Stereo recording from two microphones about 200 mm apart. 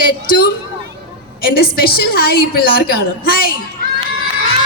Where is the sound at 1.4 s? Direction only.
50° left (ahead or behind).